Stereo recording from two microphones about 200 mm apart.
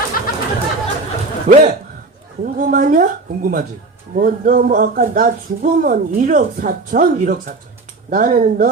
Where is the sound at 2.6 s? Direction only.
45° right (ahead or behind).